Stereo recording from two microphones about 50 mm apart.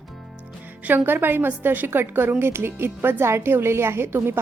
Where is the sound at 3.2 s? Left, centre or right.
Right.